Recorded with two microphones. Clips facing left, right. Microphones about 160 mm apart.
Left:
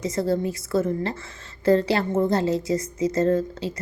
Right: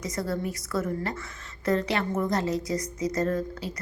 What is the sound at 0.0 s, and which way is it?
A woman's voice, 25° left (ahead or behind).